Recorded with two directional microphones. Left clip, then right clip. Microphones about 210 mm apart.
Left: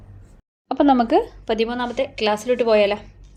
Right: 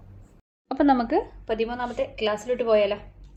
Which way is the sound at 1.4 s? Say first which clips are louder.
Left 5 dB; 50° left (ahead or behind).